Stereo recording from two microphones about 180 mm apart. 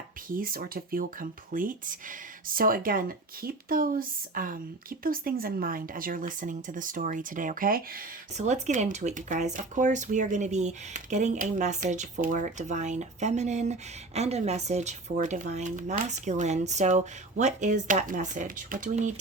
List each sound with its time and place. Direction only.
0.3 s speech: 50° right (ahead or behind)